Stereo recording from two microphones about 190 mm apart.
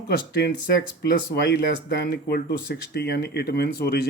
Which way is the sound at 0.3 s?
60° left (ahead or behind).